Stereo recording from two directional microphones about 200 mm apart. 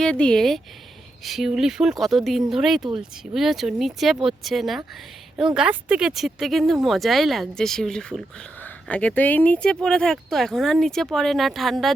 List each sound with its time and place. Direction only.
0.0 s speech: 5° left (ahead or behind)